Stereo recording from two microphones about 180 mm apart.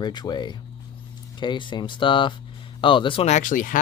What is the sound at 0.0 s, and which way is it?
Speech, 25° left (ahead or behind).